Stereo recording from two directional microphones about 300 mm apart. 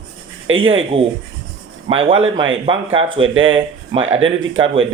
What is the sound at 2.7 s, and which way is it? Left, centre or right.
Speech, centre.